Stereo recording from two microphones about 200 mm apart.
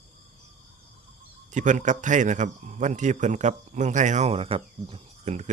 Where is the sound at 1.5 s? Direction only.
40° right (ahead or behind).